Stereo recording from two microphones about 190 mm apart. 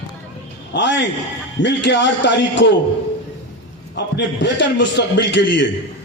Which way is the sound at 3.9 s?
70° left (ahead or behind).